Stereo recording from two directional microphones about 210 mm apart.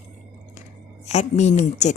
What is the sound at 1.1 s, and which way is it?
Speech, 35° left (ahead or behind).